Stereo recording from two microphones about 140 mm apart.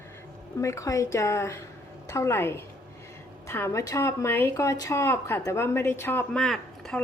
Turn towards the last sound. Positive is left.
turn(degrees=5)  # may be behind; listen again after turning